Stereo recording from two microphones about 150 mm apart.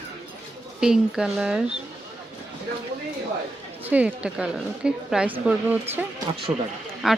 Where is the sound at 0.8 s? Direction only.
5° right (ahead or behind).